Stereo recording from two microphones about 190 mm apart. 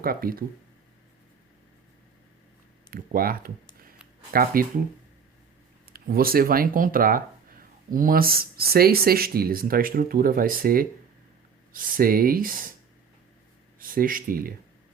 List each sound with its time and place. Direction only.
0.0 s speech: 50° right (ahead or behind)
2.9 s speech: 50° right (ahead or behind)
5.9 s speech: 50° right (ahead or behind)
13.7 s speech: 50° right (ahead or behind)